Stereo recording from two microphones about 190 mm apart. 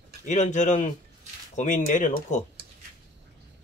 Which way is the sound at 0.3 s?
40° left (ahead or behind).